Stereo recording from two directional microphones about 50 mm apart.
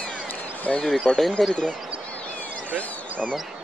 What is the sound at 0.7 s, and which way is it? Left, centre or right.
Speech, left.